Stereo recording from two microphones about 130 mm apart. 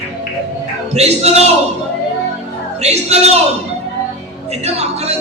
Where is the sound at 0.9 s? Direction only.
55° right (ahead or behind).